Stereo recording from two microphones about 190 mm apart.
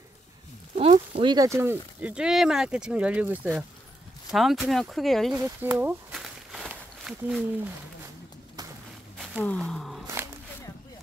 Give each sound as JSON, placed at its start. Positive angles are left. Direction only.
{"t": 0.7, "sound": "speech", "side_deg": -30}
{"t": 5.4, "sound": "speech", "side_deg": -10}
{"t": 6.1, "sound": "a sound", "side_deg": 0}
{"t": 9.4, "sound": "speech", "side_deg": 5}
{"t": 10.0, "sound": "walk", "side_deg": -15}